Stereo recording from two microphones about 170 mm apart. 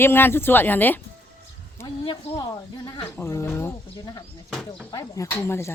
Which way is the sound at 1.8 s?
25° left (ahead or behind).